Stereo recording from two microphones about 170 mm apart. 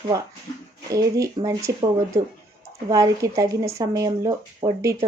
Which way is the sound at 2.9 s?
20° right (ahead or behind).